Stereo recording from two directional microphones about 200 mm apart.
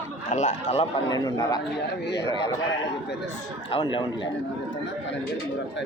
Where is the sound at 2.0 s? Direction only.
60° left (ahead or behind).